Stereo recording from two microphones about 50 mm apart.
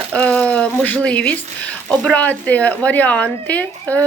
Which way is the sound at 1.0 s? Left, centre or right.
Left.